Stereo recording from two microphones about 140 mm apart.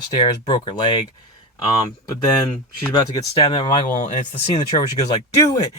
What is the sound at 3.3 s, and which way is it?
Speech, 35° left (ahead or behind).